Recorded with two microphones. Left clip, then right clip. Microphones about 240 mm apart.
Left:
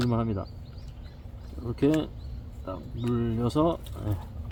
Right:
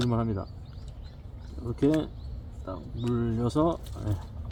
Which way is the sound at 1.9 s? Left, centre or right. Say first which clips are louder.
Even; centre.